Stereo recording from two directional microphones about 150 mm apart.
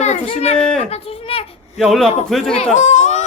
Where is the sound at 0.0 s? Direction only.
50° left (ahead or behind).